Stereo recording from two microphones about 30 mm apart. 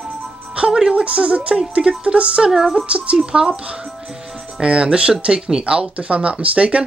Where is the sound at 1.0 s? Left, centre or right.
Right.